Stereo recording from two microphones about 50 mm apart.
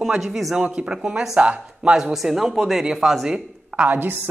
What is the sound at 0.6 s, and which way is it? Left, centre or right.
Speech, right.